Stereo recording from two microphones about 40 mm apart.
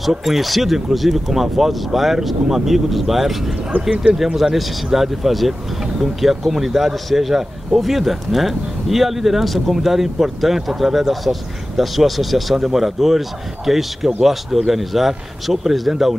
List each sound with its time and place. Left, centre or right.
0.0 s speech: centre
3.7 s speech: right
4.4 s speech: centre